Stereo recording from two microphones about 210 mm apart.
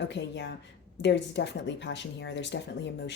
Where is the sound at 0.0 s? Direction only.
55° left (ahead or behind).